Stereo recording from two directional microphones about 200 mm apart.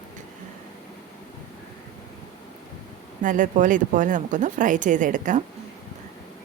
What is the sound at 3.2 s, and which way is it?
A woman's voice, 40° right (ahead or behind).